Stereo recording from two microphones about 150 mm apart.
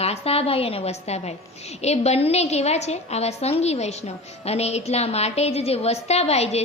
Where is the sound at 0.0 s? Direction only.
45° left (ahead or behind).